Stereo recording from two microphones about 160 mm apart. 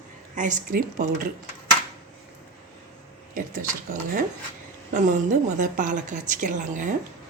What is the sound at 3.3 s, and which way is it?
A woman's voice, 55° right (ahead or behind).